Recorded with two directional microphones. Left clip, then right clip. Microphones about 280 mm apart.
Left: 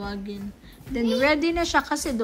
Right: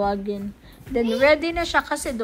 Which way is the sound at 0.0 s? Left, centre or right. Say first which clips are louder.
Right 10 dB; centre.